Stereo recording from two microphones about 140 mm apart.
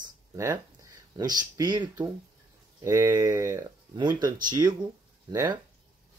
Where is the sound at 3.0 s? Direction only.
25° right (ahead or behind).